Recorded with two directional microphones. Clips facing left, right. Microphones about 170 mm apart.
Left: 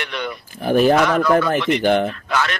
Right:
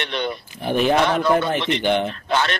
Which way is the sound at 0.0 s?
30° right (ahead or behind).